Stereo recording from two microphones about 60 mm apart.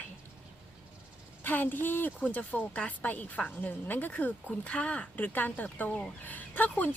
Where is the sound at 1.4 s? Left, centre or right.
Left.